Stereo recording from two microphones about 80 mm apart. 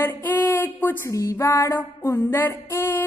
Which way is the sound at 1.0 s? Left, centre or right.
Left.